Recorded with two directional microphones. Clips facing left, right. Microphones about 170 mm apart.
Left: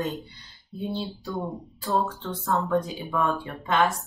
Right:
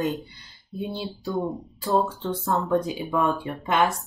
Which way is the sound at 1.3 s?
20° right (ahead or behind).